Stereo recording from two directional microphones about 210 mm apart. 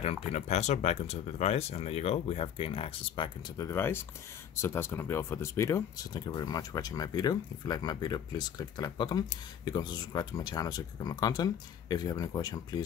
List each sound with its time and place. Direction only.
0.0 s speech: 30° left (ahead or behind)